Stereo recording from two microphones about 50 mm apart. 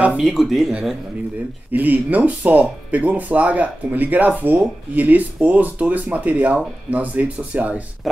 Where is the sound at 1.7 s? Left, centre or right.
Right.